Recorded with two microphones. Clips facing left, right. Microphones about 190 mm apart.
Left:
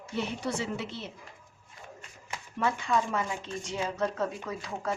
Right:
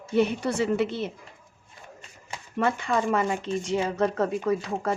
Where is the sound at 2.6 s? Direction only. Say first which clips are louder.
Right 4 dB; 65° right (ahead or behind).